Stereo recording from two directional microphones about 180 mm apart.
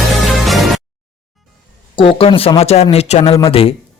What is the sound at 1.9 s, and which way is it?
Speech, 30° left (ahead or behind).